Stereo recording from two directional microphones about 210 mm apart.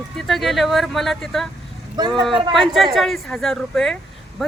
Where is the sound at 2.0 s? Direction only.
20° right (ahead or behind).